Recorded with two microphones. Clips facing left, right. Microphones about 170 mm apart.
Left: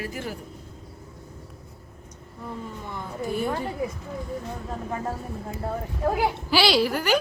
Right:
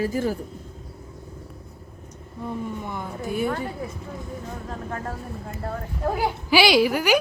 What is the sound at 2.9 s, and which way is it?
Speech, 10° right (ahead or behind).